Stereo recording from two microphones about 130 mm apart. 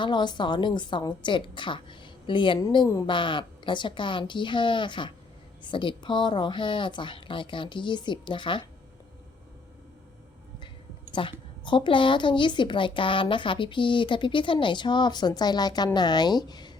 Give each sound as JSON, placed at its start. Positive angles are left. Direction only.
{"t": 0.0, "sound": "a woman's voice", "side_deg": 35}
{"t": 11.1, "sound": "a woman's voice", "side_deg": 40}